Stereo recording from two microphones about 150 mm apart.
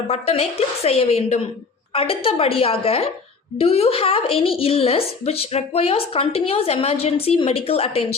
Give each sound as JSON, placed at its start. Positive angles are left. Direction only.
{"t": 0.1, "sound": "a woman's voice", "side_deg": 40}